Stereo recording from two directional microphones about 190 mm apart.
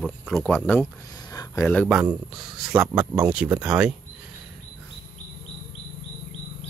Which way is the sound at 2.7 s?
5° right (ahead or behind).